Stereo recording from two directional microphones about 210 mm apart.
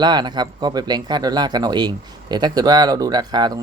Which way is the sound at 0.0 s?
20° right (ahead or behind).